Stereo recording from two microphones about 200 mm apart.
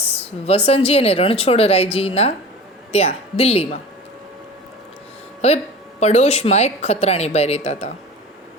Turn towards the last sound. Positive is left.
turn(degrees=35)  # may be behind; listen again after turning